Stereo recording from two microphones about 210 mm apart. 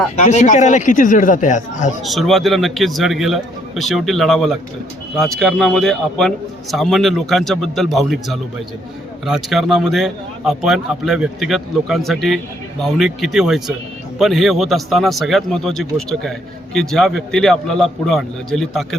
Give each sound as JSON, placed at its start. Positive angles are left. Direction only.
{"t": 0.2, "sound": "speech", "side_deg": 35}
{"t": 2.0, "sound": "a man's voice", "side_deg": 0}